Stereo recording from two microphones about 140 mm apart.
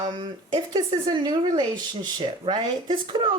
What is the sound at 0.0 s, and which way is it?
Speech, 30° right (ahead or behind).